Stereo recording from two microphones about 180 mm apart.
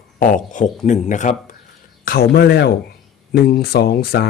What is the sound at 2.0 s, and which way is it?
Speech, 60° left (ahead or behind).